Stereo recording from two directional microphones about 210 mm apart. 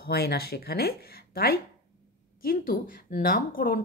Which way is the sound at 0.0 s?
50° left (ahead or behind).